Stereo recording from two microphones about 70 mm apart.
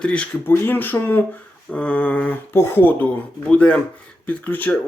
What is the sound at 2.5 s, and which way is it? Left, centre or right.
Speech, left.